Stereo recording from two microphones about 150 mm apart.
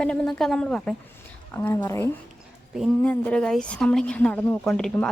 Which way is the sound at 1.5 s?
15° left (ahead or behind).